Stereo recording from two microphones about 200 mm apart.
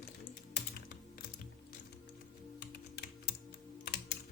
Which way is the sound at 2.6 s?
55° left (ahead or behind).